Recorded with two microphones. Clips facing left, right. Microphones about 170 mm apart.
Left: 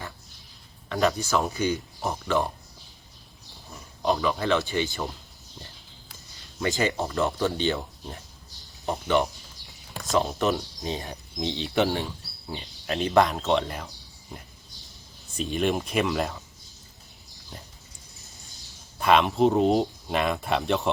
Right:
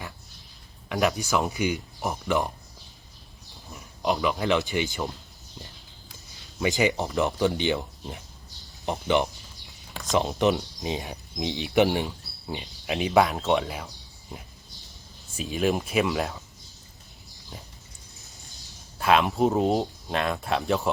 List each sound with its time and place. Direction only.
0.9 s speech: 15° right (ahead or behind)
3.7 s speech: 15° right (ahead or behind)
6.6 s speech: 15° right (ahead or behind)
15.4 s speech: 5° right (ahead or behind)
17.5 s speech: centre (ahead or behind)
18.9 s speech: centre (ahead or behind)